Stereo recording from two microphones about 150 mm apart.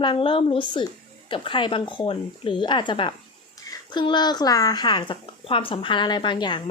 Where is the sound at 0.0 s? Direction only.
35° left (ahead or behind).